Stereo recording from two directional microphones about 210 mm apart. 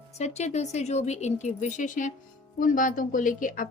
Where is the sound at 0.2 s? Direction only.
30° left (ahead or behind).